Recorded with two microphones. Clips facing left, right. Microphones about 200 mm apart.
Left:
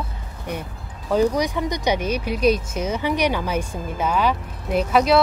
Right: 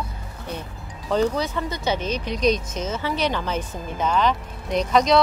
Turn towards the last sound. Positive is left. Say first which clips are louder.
# left 1 dB
turn(degrees=5)  # may be behind; listen again after turning